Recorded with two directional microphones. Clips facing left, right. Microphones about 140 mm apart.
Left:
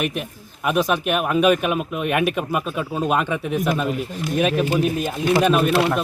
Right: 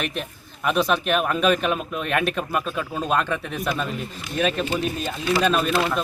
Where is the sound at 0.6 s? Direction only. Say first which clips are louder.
Left 1 dB; 10° left (ahead or behind).